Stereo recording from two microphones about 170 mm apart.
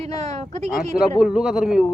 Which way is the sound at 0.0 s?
40° right (ahead or behind).